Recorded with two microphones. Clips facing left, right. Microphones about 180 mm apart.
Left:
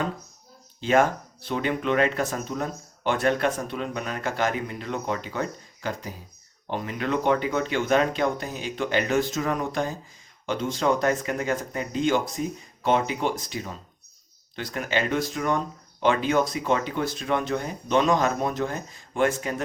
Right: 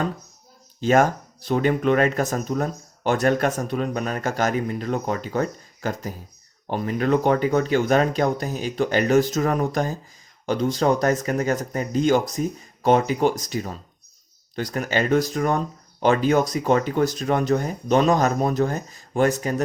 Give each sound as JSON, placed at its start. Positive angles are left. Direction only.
{"t": 0.8, "sound": "speech", "side_deg": -40}